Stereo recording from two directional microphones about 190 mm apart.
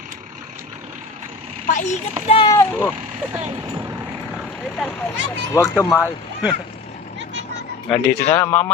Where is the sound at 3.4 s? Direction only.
35° right (ahead or behind).